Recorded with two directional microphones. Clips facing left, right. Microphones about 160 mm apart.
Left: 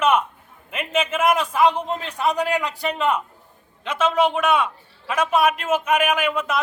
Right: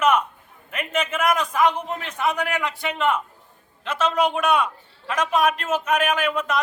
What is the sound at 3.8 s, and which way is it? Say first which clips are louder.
A man's voice: left 2 dB; 5° left (ahead or behind).